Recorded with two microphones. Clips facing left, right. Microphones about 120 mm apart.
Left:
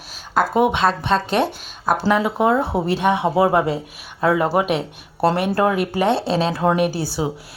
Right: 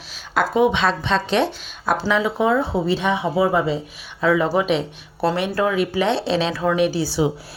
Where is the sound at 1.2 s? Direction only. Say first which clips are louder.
Even; 45° left (ahead or behind).